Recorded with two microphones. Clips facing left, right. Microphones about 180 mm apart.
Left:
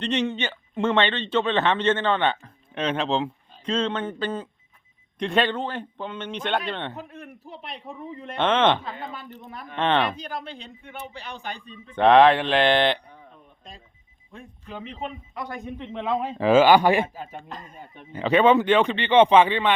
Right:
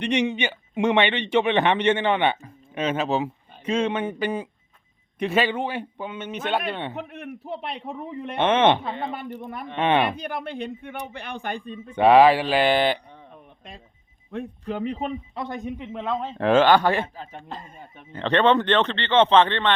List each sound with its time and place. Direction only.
0.0 s a man's voice: 10° right (ahead or behind)
6.9 s a man's voice: 65° right (ahead or behind)
8.4 s a man's voice: 15° right (ahead or behind)
8.9 s speech: 30° right (ahead or behind)
9.4 s a man's voice: 55° right (ahead or behind)
9.7 s a man's voice: 10° right (ahead or behind)
10.1 s a man's voice: 60° right (ahead or behind)
11.9 s speech: 10° right (ahead or behind)
14.3 s a man's voice: 55° right (ahead or behind)
15.4 s speech: 20° right (ahead or behind)
15.8 s speech: 5° right (ahead or behind)